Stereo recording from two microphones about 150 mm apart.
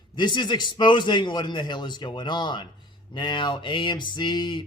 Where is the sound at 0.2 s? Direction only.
30° left (ahead or behind).